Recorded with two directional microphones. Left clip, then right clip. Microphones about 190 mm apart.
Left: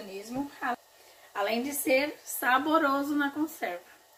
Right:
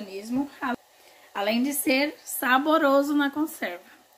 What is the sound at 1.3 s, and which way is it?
A woman's voice, 65° right (ahead or behind).